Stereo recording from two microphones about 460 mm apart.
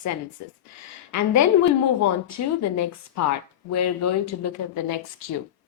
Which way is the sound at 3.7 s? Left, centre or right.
Left.